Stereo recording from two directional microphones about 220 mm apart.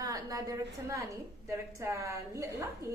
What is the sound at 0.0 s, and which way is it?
A woman's voice, 15° right (ahead or behind).